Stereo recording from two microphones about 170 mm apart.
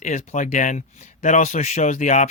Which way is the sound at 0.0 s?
45° left (ahead or behind).